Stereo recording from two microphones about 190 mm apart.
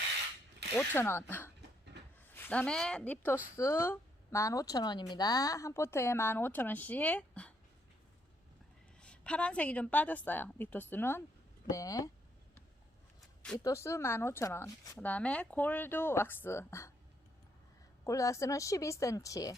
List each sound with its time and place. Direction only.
0.8 s speech: 15° left (ahead or behind)
9.0 s speech: 5° left (ahead or behind)
13.6 s speech: 15° left (ahead or behind)
18.0 s speech: 15° left (ahead or behind)